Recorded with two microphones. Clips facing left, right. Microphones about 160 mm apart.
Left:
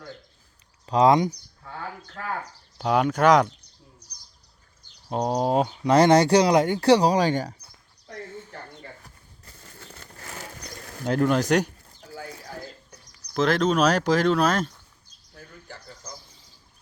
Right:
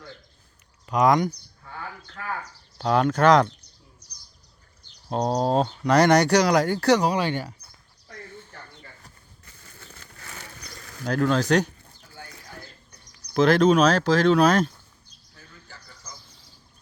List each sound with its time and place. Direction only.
0.9 s speech: 30° left (ahead or behind)
2.4 s speech: 10° left (ahead or behind)
5.1 s speech: 10° left (ahead or behind)
5.8 s speech: 25° left (ahead or behind); by 7.5 s 40° left (ahead or behind)
10.0 s a sound: 35° left (ahead or behind)
10.9 s speech: 20° left (ahead or behind)
13.3 s speech: centre (ahead or behind)
13.8 s speech: 15° left (ahead or behind)
14.3 s speech: centre (ahead or behind)
15.4 s a sound: 55° left (ahead or behind)